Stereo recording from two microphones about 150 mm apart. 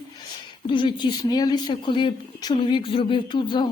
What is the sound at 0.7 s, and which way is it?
Speech, 35° left (ahead or behind).